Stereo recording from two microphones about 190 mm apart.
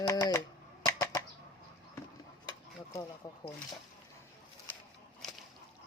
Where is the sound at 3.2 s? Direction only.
15° left (ahead or behind).